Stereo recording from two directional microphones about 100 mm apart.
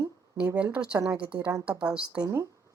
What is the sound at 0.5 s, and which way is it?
A woman's voice, 10° right (ahead or behind).